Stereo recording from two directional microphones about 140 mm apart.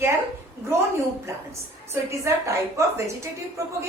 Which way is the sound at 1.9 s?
20° right (ahead or behind).